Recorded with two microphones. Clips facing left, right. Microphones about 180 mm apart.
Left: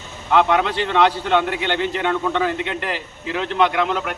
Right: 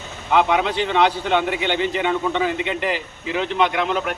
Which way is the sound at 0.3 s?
5° right (ahead or behind).